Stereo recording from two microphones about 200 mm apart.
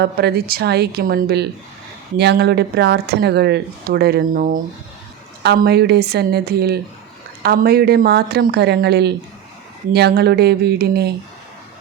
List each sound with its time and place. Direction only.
0.0 s speech: 55° right (ahead or behind)
5.4 s speech: 55° right (ahead or behind)